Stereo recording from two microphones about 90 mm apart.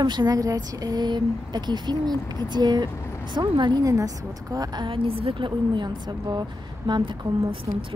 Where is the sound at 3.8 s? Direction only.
40° right (ahead or behind).